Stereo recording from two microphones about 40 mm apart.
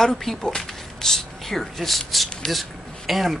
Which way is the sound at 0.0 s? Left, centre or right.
Centre.